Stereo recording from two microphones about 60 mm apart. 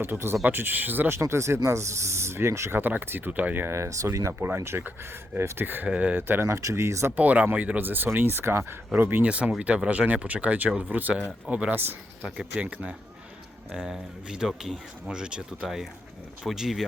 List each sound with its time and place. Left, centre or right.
0.0 s speech: right
1.1 s speech: right
2.7 s speech: right
3.8 s speech: right
4.4 s speech: right
5.9 s speech: right
6.1 s speech: right
6.5 s speech: right
6.7 s speech: right
7.2 s speech: right
9.2 s speech: right
13.7 s speech: centre
15.0 s speech: centre